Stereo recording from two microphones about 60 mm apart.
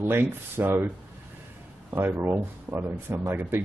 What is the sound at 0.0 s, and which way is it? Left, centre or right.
Speech, right.